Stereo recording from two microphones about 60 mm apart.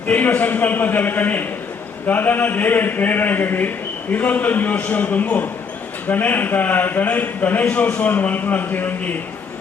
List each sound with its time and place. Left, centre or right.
0.1 s a man's voice: left